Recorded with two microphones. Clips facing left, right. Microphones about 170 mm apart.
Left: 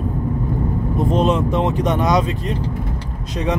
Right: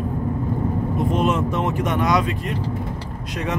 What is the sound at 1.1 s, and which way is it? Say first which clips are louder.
Speech: left 4 dB; 35° left (ahead or behind).